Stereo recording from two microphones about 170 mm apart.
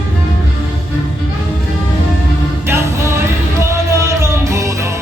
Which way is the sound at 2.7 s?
15° right (ahead or behind).